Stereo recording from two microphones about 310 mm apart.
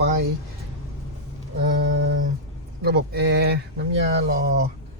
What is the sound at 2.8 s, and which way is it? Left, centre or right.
Speech, right.